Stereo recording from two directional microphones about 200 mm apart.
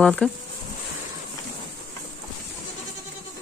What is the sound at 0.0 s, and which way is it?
Speech, 5° left (ahead or behind).